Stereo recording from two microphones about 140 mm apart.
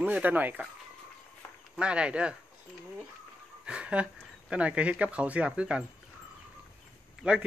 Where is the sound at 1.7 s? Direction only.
5° right (ahead or behind).